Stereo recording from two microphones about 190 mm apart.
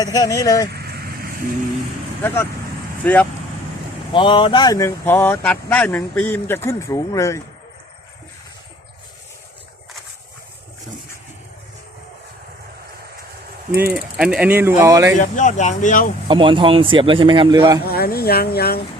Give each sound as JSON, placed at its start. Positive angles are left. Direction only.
{"t": 0.0, "sound": "speech", "side_deg": 20}
{"t": 0.7, "sound": "vehicle", "side_deg": -55}
{"t": 2.2, "sound": "speech", "side_deg": 15}
{"t": 4.1, "sound": "speech", "side_deg": 25}
{"t": 13.8, "sound": "speech", "side_deg": -5}
{"t": 15.1, "sound": "speech", "side_deg": 40}
{"t": 16.3, "sound": "a man's voice", "side_deg": -25}
{"t": 17.8, "sound": "speech", "side_deg": 55}